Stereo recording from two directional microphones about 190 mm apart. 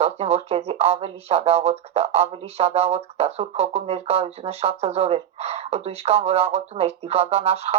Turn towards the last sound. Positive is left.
turn(degrees=-30)  # may be behind; listen again after turning